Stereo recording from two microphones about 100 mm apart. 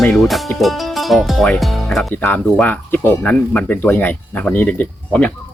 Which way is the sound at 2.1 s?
20° left (ahead or behind).